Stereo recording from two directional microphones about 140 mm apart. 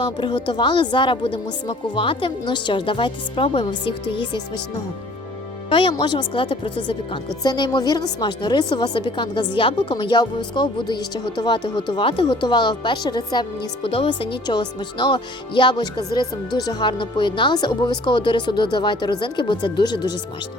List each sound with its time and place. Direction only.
0.0 s a woman's voice: 35° left (ahead or behind)
5.6 s a woman's voice: 35° left (ahead or behind)
13.8 s a woman's voice: 40° left (ahead or behind)